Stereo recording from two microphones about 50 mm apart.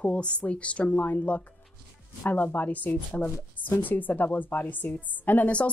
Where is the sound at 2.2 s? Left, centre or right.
Left.